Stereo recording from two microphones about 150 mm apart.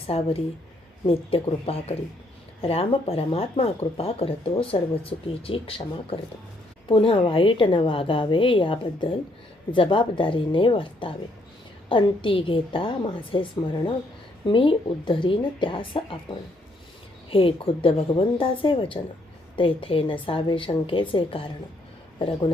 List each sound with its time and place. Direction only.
0.1 s speech: 40° left (ahead or behind)
17.3 s speech: 35° left (ahead or behind)